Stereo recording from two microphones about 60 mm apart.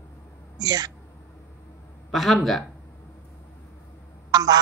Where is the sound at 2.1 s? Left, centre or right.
Centre.